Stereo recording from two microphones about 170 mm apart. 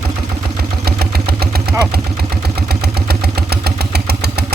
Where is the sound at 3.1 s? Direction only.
70° right (ahead or behind).